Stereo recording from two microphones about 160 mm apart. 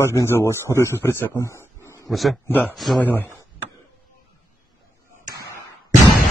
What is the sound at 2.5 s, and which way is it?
Speech, 10° left (ahead or behind).